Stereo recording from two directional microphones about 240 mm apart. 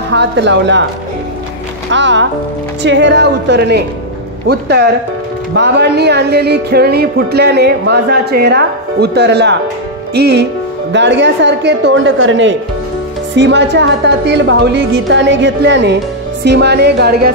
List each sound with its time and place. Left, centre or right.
0.1 s speech: right
1.9 s speech: right